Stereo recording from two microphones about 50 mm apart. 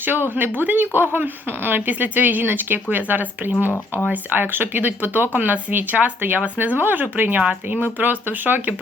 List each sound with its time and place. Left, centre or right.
0.0 s speech: right